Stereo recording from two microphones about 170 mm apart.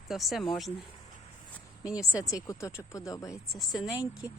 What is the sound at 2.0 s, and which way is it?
Speech, 20° left (ahead or behind).